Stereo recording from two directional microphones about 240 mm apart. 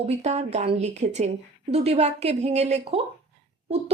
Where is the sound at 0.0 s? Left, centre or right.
Right.